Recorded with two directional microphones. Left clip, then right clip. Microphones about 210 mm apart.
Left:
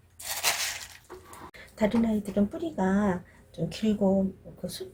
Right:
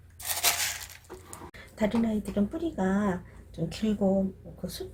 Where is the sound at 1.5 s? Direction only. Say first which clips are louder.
Left 2 dB; centre (ahead or behind).